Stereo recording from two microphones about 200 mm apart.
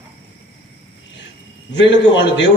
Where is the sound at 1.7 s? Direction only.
60° left (ahead or behind).